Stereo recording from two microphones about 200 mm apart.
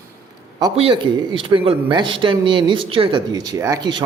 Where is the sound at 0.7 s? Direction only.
25° right (ahead or behind).